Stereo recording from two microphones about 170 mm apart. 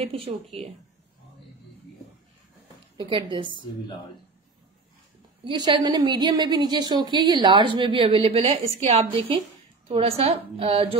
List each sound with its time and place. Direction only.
0.0 s a woman's voice: 35° right (ahead or behind)
3.0 s a woman's voice: 30° right (ahead or behind)
5.4 s a woman's voice: 25° right (ahead or behind)